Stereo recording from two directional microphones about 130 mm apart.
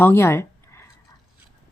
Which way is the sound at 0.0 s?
20° left (ahead or behind).